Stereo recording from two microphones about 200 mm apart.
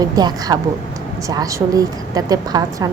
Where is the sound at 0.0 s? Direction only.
20° right (ahead or behind).